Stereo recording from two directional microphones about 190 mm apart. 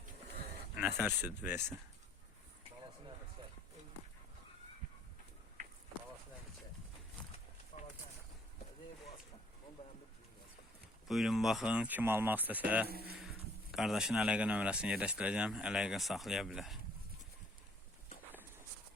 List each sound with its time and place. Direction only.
0.8 s speech: 10° right (ahead or behind)
7.7 s a sound: 35° left (ahead or behind)
11.1 s speech: centre (ahead or behind)
12.9 s speech: 55° right (ahead or behind)
13.1 s speech: centre (ahead or behind)